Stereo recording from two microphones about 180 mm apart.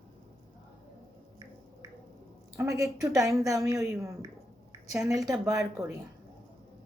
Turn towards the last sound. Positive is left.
turn(degrees=-15)  # may be behind; listen again after turning